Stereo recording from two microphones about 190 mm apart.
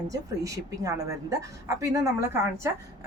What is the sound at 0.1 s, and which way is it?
Speech, 15° right (ahead or behind).